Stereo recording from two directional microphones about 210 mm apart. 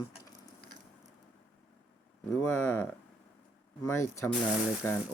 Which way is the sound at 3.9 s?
15° left (ahead or behind).